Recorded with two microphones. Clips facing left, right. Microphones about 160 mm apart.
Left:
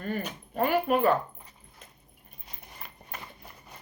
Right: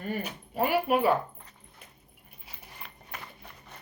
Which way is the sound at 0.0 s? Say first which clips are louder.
Left 1 dB; 5° right (ahead or behind).